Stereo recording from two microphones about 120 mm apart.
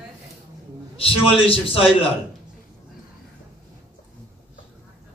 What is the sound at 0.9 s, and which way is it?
Speech, 50° left (ahead or behind).